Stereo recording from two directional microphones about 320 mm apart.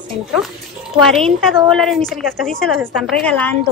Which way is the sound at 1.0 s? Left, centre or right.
Centre.